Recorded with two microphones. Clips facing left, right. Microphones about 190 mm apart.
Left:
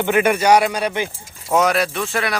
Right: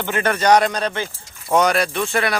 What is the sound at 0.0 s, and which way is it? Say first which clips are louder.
Speech: left 3 dB; 15° left (ahead or behind).